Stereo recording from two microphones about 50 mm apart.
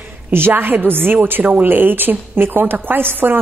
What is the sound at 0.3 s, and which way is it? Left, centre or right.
A woman's voice, right.